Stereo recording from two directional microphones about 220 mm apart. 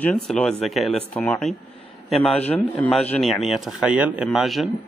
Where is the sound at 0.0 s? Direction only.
5° left (ahead or behind).